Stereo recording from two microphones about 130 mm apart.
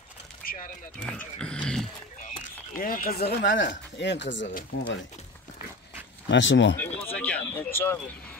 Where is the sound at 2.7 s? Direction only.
90° left.